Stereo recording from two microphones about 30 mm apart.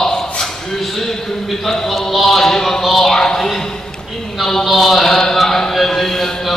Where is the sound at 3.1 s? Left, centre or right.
Centre.